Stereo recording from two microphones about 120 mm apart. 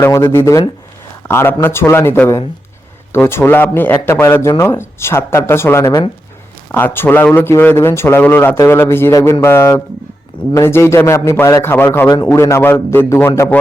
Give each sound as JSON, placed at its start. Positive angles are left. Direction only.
{"t": 0.0, "sound": "a man's voice", "side_deg": 20}
{"t": 12.0, "sound": "a man's voice", "side_deg": 30}